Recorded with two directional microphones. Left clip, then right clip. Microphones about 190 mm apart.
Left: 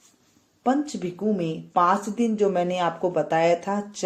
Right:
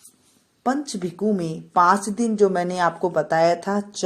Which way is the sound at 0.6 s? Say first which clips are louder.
Even; 35° right (ahead or behind).